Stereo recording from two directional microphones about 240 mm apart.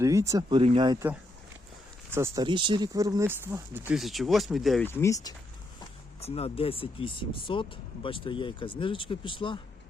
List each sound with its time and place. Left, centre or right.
0.0 s speech: centre
5.8 s speech: left